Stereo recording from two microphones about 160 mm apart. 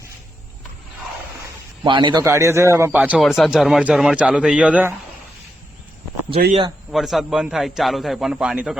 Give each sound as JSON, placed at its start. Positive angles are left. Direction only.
{"t": 1.8, "sound": "a man's voice", "side_deg": -30}
{"t": 2.2, "sound": "a man's voice", "side_deg": -15}
{"t": 6.9, "sound": "a man's voice", "side_deg": 0}